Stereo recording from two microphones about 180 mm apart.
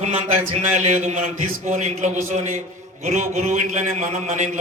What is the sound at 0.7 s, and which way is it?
A man's voice, 40° right (ahead or behind).